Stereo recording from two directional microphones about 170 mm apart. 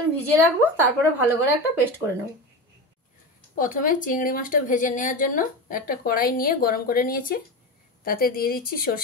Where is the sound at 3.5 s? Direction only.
50° left (ahead or behind).